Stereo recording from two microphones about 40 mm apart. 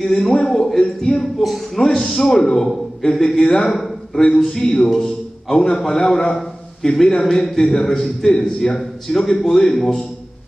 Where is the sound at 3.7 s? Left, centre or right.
Centre.